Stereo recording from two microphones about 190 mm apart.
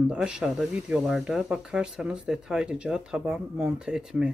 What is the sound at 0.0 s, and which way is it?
Speech, 5° right (ahead or behind).